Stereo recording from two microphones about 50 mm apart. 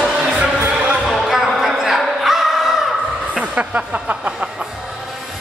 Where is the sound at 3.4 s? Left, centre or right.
Right.